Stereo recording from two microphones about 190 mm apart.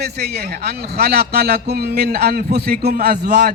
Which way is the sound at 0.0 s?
55° right (ahead or behind).